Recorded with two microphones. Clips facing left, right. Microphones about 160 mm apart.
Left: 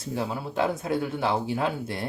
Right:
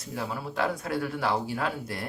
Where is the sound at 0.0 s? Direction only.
25° left (ahead or behind).